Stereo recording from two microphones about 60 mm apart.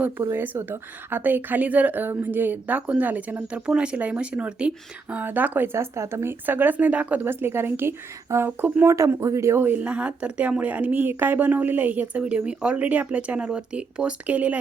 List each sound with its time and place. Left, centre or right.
0.2 s a woman's voice: right; by 4.7 s centre
5.1 s a woman's voice: right
5.7 s a woman's voice: right
9.2 s speech: right
9.6 s a woman's voice: right
9.8 s a woman's voice: right